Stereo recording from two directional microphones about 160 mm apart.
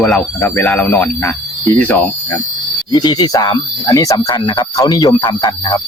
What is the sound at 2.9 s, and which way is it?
Speech, 25° left (ahead or behind).